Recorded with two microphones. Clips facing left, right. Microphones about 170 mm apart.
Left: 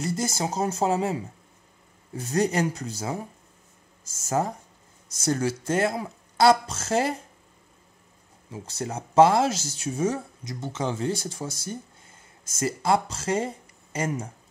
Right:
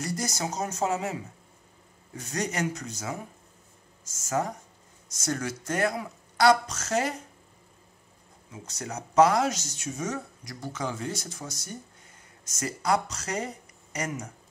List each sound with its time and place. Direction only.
0.0 s speech: 25° left (ahead or behind)
4.3 s speech: 30° left (ahead or behind)
8.5 s speech: 30° left (ahead or behind)